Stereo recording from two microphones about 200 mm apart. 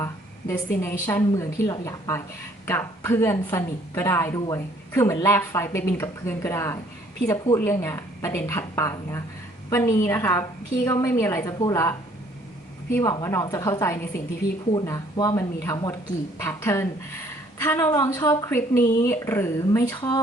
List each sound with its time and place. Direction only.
0.0 s a woman's voice: 10° left (ahead or behind)